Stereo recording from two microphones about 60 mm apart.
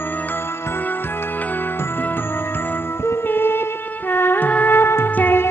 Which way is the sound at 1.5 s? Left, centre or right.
Left.